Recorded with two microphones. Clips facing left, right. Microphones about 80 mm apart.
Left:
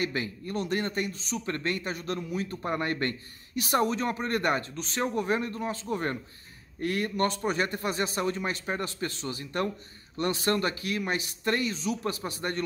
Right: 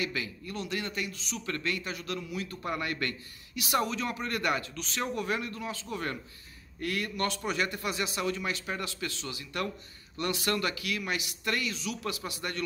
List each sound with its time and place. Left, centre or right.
0.0 s a man's voice: left